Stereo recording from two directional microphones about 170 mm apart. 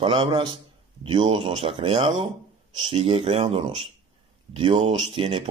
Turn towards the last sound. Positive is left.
turn(degrees=-30)  # may be behind; listen again after turning